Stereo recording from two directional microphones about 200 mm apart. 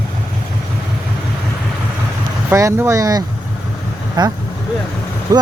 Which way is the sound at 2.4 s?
15° right (ahead or behind).